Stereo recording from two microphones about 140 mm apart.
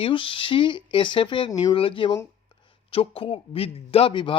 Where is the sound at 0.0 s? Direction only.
40° left (ahead or behind).